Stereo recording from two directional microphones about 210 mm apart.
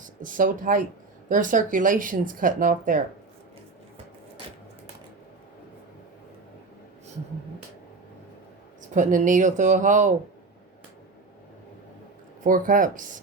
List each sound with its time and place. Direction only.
0.0 s speech: 40° right (ahead or behind)
9.0 s speech: 40° right (ahead or behind)
12.4 s speech: 40° right (ahead or behind)